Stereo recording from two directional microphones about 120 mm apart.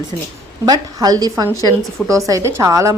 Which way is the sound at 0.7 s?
30° right (ahead or behind).